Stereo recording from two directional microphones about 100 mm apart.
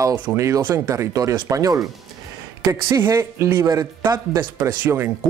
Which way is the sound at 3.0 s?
25° right (ahead or behind).